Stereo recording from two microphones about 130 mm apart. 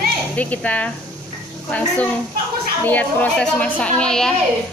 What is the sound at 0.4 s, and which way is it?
Speech, 10° left (ahead or behind).